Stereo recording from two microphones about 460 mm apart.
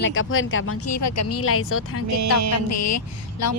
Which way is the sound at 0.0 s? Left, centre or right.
Left.